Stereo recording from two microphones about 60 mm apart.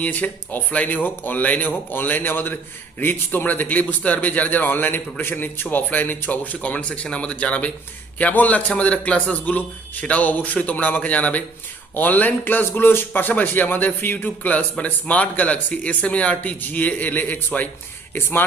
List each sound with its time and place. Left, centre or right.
0.0 s a man's voice: left